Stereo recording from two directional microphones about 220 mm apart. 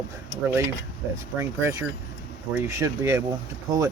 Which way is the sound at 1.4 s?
10° right (ahead or behind).